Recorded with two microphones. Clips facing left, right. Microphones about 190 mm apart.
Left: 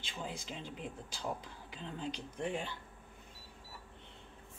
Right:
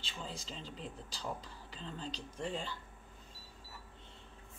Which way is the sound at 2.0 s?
55° left (ahead or behind).